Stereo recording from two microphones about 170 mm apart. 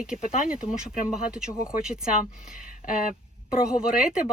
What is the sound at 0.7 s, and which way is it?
Speech, 5° right (ahead or behind).